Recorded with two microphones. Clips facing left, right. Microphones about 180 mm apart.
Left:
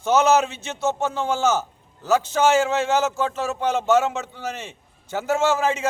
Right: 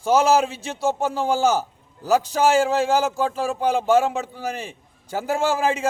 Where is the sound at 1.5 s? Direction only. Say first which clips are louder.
Right 1 dB; 10° right (ahead or behind).